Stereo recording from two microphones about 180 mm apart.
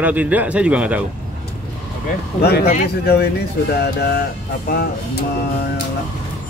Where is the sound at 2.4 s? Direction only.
60° left (ahead or behind).